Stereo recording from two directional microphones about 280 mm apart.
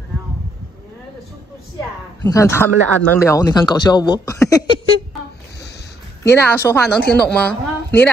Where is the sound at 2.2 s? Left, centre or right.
Centre.